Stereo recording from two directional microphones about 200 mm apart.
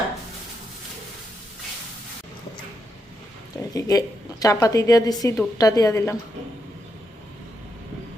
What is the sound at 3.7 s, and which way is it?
A woman's voice, 20° left (ahead or behind).